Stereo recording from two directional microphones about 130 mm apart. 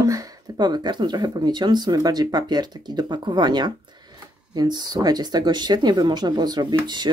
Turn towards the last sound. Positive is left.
turn(degrees=-35)  # may be behind; listen again after turning